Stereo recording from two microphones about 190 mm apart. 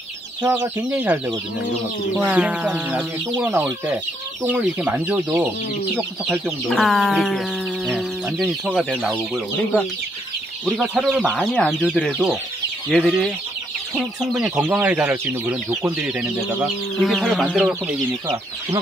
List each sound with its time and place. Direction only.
0.4 s speech: 20° right (ahead or behind)
0.7 s speech: 10° right (ahead or behind)